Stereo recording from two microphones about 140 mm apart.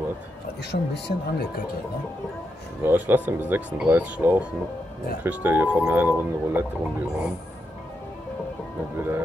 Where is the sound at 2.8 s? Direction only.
10° right (ahead or behind).